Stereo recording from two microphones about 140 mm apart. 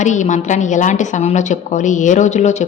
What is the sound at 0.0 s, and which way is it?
A woman's voice, 60° left (ahead or behind).